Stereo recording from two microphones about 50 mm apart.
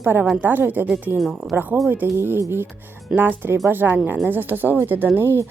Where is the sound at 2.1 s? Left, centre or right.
Right.